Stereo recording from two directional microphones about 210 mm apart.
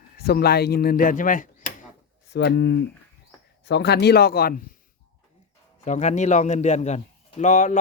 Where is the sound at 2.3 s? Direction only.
50° left (ahead or behind).